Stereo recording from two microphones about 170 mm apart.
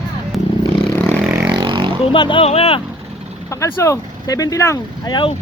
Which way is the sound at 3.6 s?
15° left (ahead or behind).